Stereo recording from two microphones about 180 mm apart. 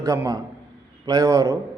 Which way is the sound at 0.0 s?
20° right (ahead or behind).